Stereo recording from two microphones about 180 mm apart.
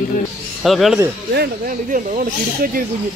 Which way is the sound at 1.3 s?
55° right (ahead or behind).